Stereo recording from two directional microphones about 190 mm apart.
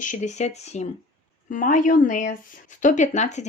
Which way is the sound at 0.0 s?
40° left (ahead or behind).